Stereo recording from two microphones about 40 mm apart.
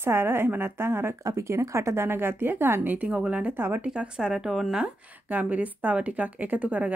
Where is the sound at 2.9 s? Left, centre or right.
Right.